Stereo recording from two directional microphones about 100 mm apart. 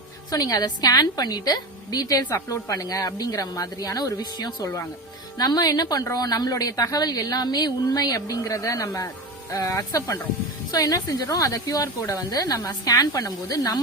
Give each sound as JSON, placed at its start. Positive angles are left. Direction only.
{"t": 0.3, "sound": "a woman's voice", "side_deg": 35}